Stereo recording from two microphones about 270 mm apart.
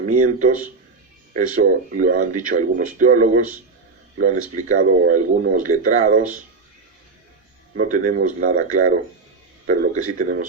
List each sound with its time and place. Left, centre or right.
0.2 s speech: right
7.9 s a man's voice: right